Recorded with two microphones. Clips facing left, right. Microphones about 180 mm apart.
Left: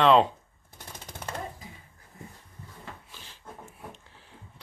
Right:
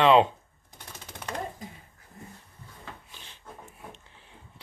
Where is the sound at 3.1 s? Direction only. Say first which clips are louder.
Left 1 dB; centre (ahead or behind).